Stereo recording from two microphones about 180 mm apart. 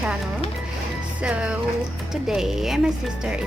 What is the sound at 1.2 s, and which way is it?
Speech, 5° right (ahead or behind).